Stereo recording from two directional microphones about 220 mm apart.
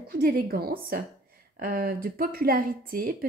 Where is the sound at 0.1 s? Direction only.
40° right (ahead or behind).